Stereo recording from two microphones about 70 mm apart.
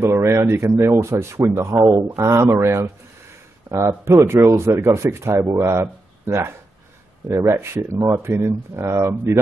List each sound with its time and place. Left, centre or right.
0.0 s speech: right
2.4 s speech: right
3.6 s speech: right